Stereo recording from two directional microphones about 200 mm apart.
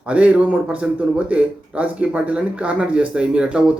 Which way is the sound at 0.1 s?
5° right (ahead or behind).